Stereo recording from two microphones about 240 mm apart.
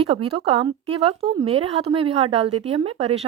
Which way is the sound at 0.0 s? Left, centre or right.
Right.